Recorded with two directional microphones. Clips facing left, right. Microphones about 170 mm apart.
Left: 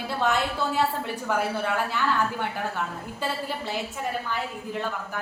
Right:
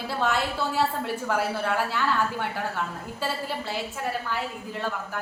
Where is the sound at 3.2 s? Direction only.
Centre (ahead or behind).